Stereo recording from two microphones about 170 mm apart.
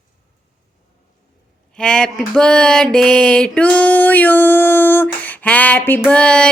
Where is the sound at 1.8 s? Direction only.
5° left (ahead or behind).